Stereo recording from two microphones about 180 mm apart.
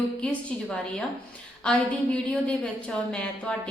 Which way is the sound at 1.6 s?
5° left (ahead or behind).